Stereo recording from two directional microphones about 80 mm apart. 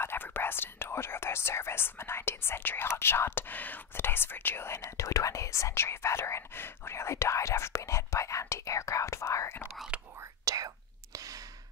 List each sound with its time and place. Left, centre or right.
0.0 s speech: left
4.7 s speech: left
9.9 s whispering: centre
10.4 s whispering: right